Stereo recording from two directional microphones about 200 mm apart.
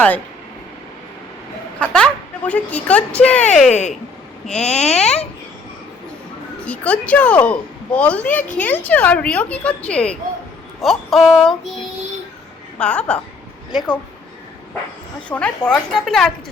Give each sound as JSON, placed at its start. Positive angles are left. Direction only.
{"t": 1.8, "sound": "a woman's voice", "side_deg": 5}
{"t": 3.7, "sound": "speech", "side_deg": 35}
{"t": 6.7, "sound": "a woman's voice", "side_deg": 5}
{"t": 12.8, "sound": "a woman's voice", "side_deg": 5}
{"t": 15.3, "sound": "a woman's voice", "side_deg": 5}